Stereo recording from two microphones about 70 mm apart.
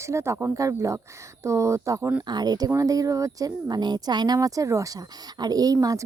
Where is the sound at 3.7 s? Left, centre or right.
Right.